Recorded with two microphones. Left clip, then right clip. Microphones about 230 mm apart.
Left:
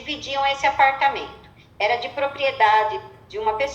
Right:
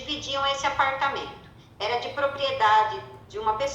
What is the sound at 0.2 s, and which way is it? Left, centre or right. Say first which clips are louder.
Speech: left 5 dB; left.